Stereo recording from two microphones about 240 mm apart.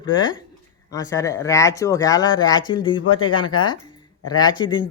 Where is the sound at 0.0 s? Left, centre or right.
Centre.